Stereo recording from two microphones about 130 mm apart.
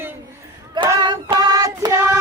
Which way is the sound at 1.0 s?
35° right (ahead or behind).